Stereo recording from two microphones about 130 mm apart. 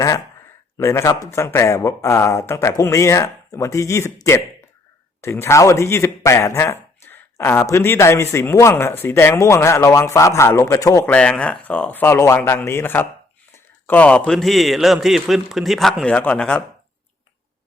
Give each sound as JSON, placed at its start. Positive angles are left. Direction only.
{"t": 0.8, "sound": "speech", "side_deg": 20}
{"t": 11.0, "sound": "a man's voice", "side_deg": 10}